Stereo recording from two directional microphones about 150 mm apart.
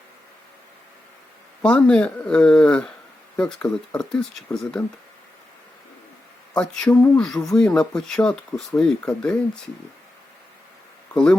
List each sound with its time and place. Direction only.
1.6 s speech: 5° left (ahead or behind)
6.5 s speech: 5° left (ahead or behind)
11.1 s speech: 5° left (ahead or behind)